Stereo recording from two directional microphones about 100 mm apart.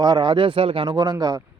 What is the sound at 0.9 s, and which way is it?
Speech, 40° right (ahead or behind).